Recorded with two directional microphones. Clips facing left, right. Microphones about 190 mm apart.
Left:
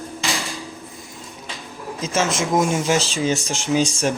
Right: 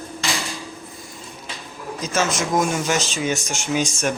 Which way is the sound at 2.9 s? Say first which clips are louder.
Left 3 dB; 30° left (ahead or behind).